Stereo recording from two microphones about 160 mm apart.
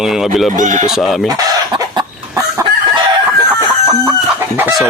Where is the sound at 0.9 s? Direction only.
Centre (ahead or behind).